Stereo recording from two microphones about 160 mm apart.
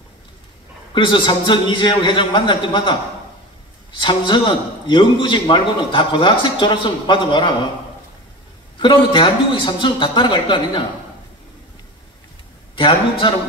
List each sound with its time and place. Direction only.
0.9 s a man's voice: 30° left (ahead or behind)
4.0 s a man's voice: 30° left (ahead or behind)
8.8 s a man's voice: 30° left (ahead or behind)
12.7 s a man's voice: 35° left (ahead or behind)